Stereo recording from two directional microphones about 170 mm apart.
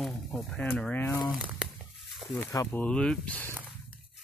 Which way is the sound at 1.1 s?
20° left (ahead or behind).